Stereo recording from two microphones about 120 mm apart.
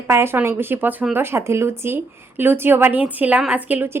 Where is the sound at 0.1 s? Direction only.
20° right (ahead or behind).